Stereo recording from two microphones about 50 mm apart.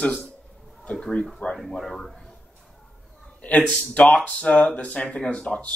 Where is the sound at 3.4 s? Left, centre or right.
Left.